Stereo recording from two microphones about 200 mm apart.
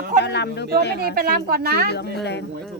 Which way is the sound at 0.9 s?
45° right (ahead or behind).